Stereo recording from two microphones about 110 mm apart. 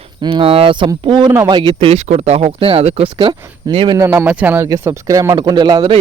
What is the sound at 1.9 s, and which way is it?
Speech, 70° right (ahead or behind).